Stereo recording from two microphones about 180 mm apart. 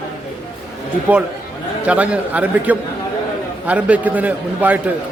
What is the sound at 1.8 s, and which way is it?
A man's voice, 5° right (ahead or behind).